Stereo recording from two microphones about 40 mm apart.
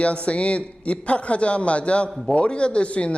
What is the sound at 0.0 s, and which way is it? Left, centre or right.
Speech, left.